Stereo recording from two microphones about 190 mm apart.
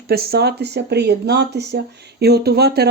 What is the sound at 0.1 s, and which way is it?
Speech, 55° right (ahead or behind).